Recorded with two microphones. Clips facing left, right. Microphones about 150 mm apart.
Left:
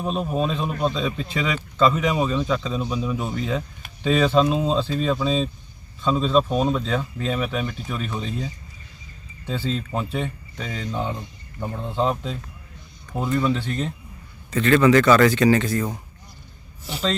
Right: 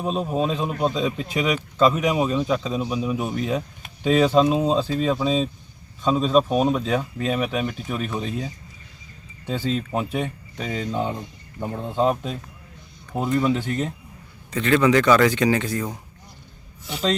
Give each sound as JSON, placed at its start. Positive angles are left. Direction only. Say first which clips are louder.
{"t": 0.0, "sound": "speech", "louder": "right 1 dB", "side_deg": -15}
{"t": 9.5, "sound": "speech", "louder": "right 2 dB", "side_deg": -15}